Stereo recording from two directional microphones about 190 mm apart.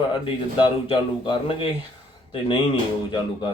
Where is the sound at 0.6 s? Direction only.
25° left (ahead or behind).